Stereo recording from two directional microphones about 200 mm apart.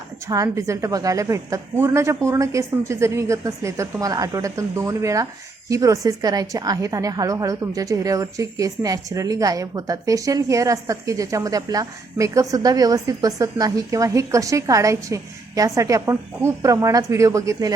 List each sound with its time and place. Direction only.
0.3 s a woman's voice: 15° right (ahead or behind)